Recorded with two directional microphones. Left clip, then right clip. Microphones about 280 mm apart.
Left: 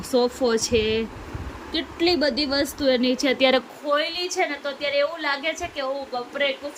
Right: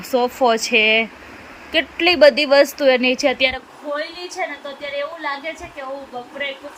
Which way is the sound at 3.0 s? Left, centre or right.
Centre.